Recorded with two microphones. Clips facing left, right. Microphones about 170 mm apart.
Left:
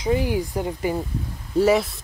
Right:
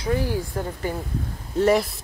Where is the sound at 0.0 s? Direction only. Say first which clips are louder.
Left 2 dB; 15° left (ahead or behind).